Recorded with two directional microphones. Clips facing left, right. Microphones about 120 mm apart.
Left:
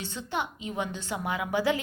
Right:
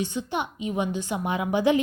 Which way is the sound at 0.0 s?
15° right (ahead or behind).